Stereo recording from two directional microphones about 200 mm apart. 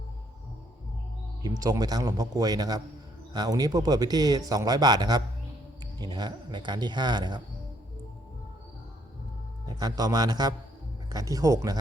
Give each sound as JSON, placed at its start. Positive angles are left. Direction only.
{"t": 1.4, "sound": "speech", "side_deg": -20}
{"t": 9.6, "sound": "speech", "side_deg": -20}